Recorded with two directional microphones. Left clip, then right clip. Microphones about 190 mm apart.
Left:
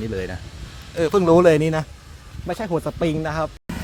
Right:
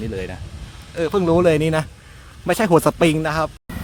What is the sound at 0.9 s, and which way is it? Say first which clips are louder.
Speech: left 2 dB; centre (ahead or behind).